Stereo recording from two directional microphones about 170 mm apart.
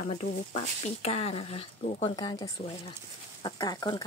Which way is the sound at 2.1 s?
20° left (ahead or behind).